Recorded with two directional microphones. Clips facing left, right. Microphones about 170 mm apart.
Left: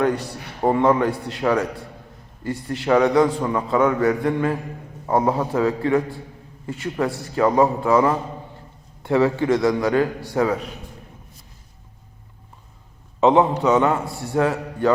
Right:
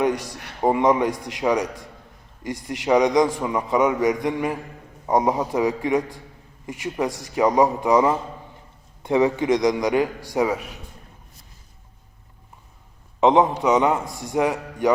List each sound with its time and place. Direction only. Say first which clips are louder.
0.0 s a man's voice: left 1 dB; 15° right (ahead or behind)
13.1 s a man's voice: left 1 dB; 15° right (ahead or behind)